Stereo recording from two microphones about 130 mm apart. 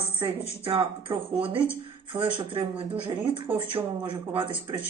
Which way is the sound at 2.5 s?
40° right (ahead or behind).